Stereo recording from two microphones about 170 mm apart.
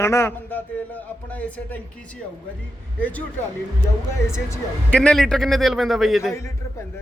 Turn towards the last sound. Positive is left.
turn(degrees=0)  # may be behind; listen again after turning